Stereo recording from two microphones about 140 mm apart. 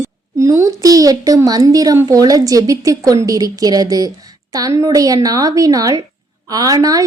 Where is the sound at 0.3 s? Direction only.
20° right (ahead or behind).